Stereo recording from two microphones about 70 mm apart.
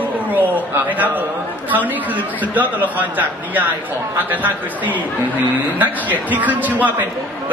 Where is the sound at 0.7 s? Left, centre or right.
Right.